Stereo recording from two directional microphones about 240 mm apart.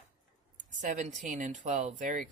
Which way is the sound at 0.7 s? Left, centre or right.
Right.